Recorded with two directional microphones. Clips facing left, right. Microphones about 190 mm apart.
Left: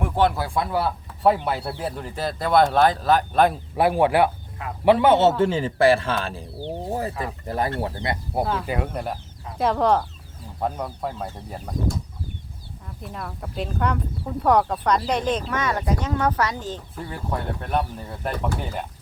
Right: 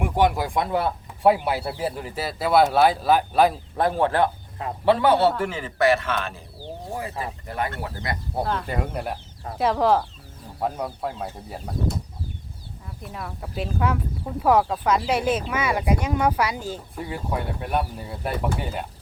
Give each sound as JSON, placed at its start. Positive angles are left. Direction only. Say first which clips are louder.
{"t": 0.0, "sound": "speech", "louder": "even", "side_deg": -15}
{"t": 1.2, "sound": "speech", "louder": "right 1 dB", "side_deg": -10}
{"t": 3.8, "sound": "speech", "louder": "left 3 dB", "side_deg": 10}
{"t": 6.9, "sound": "speech", "louder": "left 1 dB", "side_deg": 40}
{"t": 8.4, "sound": "speech", "louder": "left 1 dB", "side_deg": 5}
{"t": 13.0, "sound": "speech", "louder": "left 1 dB", "side_deg": 0}